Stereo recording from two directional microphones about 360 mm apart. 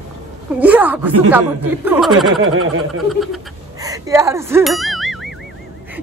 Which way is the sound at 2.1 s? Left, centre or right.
Right.